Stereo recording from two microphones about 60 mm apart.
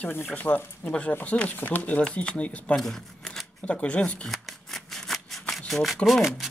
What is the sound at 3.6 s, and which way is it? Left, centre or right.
Speech, left.